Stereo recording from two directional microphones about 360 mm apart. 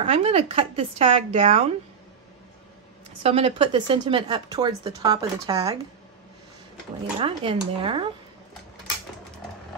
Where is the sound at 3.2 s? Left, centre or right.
Centre.